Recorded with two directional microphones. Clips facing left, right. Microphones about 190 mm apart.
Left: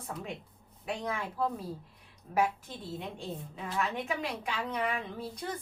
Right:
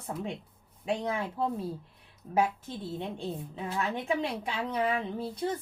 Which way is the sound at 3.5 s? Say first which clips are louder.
Even; 25° right (ahead or behind).